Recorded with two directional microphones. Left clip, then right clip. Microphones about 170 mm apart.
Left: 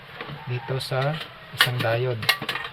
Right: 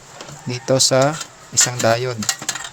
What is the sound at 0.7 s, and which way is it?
Speech, 90° right.